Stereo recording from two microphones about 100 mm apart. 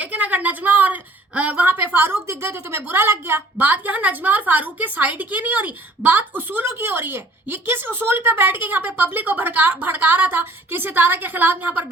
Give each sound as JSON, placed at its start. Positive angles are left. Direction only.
{"t": 0.0, "sound": "a woman's voice", "side_deg": -15}